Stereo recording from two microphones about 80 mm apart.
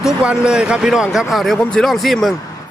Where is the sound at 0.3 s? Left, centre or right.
Centre.